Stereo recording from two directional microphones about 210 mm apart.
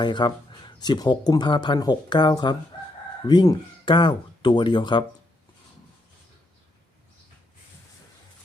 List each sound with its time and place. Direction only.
0.0 s speech: 20° left (ahead or behind)